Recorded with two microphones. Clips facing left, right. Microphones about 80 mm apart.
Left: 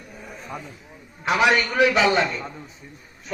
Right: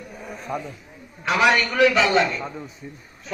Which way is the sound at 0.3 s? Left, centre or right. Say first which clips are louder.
Right 6 dB; centre.